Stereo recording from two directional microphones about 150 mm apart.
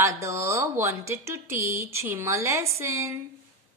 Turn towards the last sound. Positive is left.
turn(degrees=-20)  # may be behind; listen again after turning